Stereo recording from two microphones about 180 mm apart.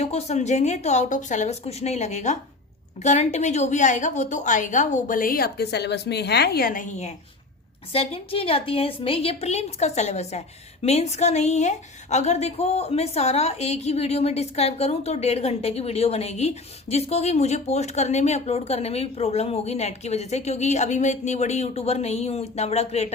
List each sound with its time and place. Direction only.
0.0 s a woman's voice: 35° left (ahead or behind); by 6.8 s 55° left (ahead or behind)
7.9 s a woman's voice: 30° left (ahead or behind)